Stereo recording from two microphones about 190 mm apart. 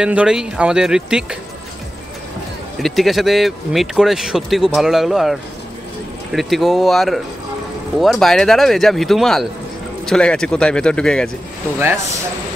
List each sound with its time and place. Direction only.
0.0 s speech: 5° right (ahead or behind)
2.8 s speech: centre (ahead or behind)
11.8 s speech: 15° right (ahead or behind)